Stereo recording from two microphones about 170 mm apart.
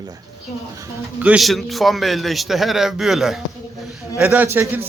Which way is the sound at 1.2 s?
5° right (ahead or behind).